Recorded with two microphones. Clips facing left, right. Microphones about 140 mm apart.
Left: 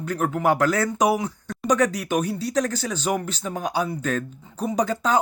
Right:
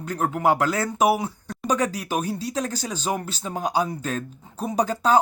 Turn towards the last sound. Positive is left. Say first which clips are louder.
# right 2 dB
turn(degrees=-35)  # may be behind; listen again after turning